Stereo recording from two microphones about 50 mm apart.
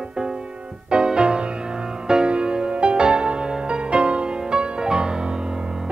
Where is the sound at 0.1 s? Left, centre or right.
Centre.